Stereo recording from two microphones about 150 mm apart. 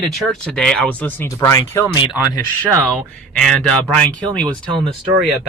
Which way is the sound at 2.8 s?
5° left (ahead or behind).